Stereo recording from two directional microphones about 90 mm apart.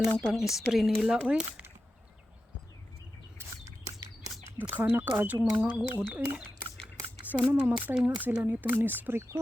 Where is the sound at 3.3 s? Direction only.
35° right (ahead or behind).